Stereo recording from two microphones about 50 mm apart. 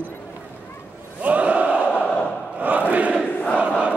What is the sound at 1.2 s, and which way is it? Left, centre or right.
Crowd, right.